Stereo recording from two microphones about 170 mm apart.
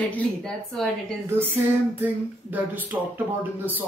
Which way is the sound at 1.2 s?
10° right (ahead or behind).